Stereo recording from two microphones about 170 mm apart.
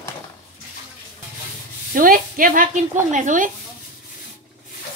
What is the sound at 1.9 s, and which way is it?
Speech, 55° right (ahead or behind).